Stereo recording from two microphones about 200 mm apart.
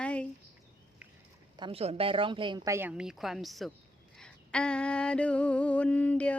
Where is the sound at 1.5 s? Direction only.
25° right (ahead or behind).